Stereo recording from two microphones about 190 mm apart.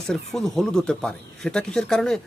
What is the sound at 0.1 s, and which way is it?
Speech, centre (ahead or behind).